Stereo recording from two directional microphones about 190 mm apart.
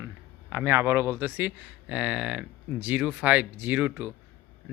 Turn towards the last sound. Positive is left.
turn(degrees=-10)  # may be behind; listen again after turning